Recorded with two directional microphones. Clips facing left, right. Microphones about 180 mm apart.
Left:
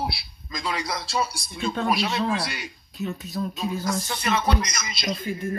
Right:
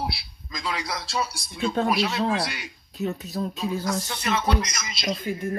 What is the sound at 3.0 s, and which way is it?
Speech, 35° right (ahead or behind).